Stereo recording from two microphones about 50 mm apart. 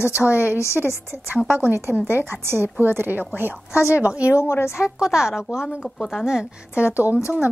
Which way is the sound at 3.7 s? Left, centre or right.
Left.